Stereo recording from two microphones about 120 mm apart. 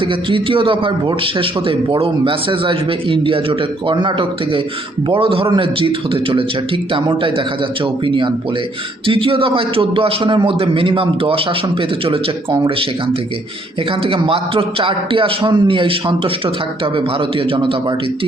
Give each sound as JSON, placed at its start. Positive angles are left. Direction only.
{"t": 0.0, "sound": "a man's voice", "side_deg": -45}
{"t": 14.0, "sound": "a man's voice", "side_deg": -50}